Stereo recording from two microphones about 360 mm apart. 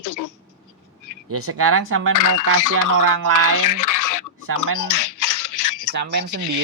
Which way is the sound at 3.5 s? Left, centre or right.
Left.